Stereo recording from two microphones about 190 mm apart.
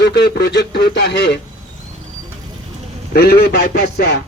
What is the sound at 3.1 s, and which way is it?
A man's voice, 60° left (ahead or behind).